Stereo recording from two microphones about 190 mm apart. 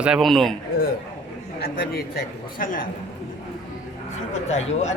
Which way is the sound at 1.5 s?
55° left (ahead or behind).